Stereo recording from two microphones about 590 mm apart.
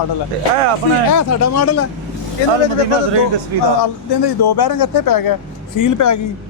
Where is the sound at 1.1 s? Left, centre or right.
Left.